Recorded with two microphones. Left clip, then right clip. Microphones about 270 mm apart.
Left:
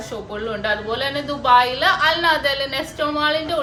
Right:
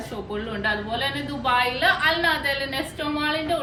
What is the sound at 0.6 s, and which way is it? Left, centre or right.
A woman's voice, centre.